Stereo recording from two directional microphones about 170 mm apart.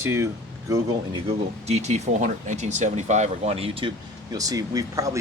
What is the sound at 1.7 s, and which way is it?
Speech, 40° right (ahead or behind).